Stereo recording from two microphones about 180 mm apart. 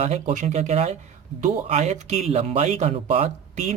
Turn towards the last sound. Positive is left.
turn(degrees=-40)  # may be behind; listen again after turning